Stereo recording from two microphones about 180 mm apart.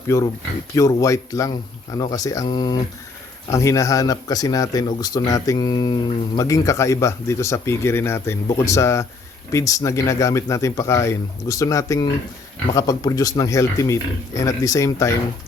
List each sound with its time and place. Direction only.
0.1 s speech: 15° left (ahead or behind)